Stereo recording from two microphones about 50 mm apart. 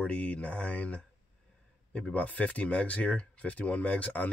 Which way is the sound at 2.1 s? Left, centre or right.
Left.